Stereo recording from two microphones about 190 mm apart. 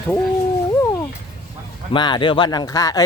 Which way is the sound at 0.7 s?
15° left (ahead or behind).